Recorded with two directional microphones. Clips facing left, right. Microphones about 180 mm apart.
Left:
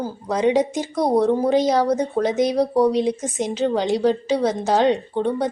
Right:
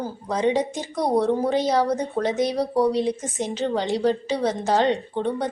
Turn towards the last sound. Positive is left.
turn(degrees=10)  # may be behind; listen again after turning